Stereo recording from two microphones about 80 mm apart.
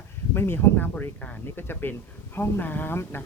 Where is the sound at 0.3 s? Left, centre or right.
Left.